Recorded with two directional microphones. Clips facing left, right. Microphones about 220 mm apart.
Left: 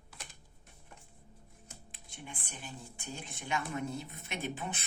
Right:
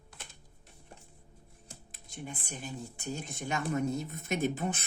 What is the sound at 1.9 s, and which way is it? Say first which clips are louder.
Speech: right 6 dB; 45° right (ahead or behind).